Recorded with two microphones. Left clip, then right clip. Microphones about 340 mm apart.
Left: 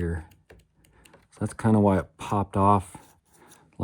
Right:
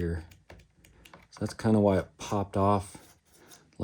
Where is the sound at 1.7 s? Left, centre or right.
Centre.